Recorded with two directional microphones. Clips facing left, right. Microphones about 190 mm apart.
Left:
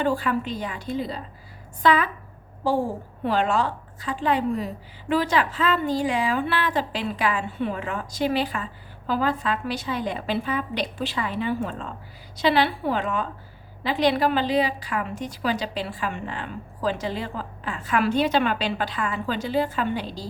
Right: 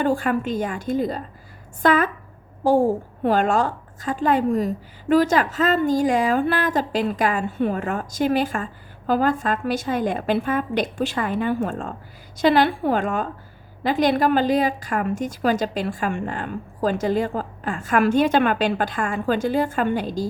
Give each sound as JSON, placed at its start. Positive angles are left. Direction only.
{"t": 0.0, "sound": "a woman's voice", "side_deg": -45}